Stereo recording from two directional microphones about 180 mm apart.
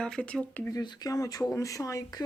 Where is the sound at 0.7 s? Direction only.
20° left (ahead or behind).